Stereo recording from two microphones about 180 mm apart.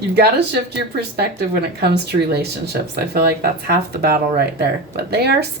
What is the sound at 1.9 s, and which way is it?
Speech, 65° right (ahead or behind).